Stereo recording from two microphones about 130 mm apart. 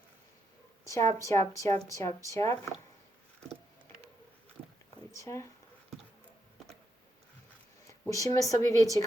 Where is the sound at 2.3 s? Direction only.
20° left (ahead or behind).